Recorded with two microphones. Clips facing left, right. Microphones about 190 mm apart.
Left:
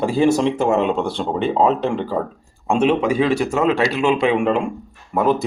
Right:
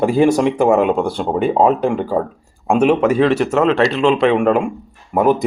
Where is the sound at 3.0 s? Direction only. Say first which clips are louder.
Right 4 dB; 10° left (ahead or behind).